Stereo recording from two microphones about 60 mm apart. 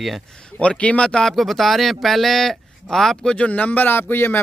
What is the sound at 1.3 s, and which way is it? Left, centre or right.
Speech, centre.